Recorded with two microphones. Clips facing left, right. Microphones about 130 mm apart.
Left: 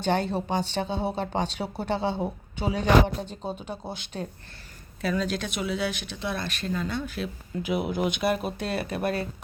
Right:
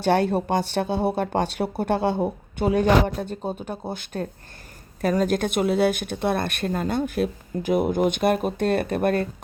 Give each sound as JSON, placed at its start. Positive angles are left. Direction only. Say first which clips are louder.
{"t": 0.0, "sound": "speech", "louder": "right 5 dB", "side_deg": -60}